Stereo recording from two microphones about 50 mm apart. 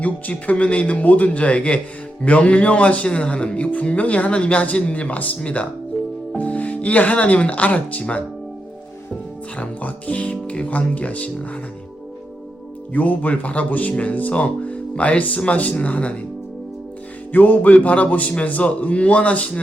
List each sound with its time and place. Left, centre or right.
0.0 s a man's voice: left
9.6 s a man's voice: left
12.9 s a man's voice: left
17.3 s a man's voice: left